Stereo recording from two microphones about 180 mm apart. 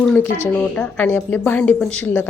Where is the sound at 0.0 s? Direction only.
5° left (ahead or behind).